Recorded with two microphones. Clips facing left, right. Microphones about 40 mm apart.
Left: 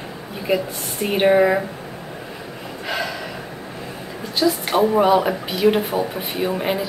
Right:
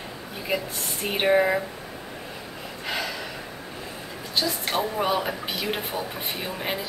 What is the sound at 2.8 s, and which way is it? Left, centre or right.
Gasp, centre.